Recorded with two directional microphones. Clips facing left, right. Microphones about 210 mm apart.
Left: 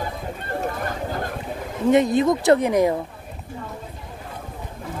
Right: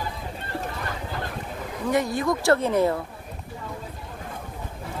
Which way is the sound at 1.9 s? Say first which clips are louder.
Left 7 dB; 20° left (ahead or behind).